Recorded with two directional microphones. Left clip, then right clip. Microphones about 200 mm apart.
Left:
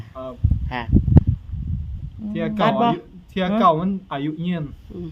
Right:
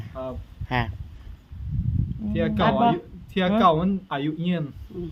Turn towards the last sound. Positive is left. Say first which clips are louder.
# even
turn(degrees=55)  # may be behind; listen again after turning